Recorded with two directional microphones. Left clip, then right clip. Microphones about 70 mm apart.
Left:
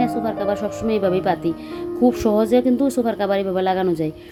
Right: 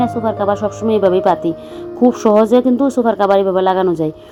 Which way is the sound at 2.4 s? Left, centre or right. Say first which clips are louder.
Right 3 dB; right.